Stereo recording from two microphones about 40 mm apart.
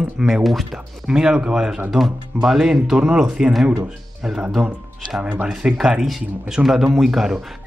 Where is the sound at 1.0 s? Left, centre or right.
Centre.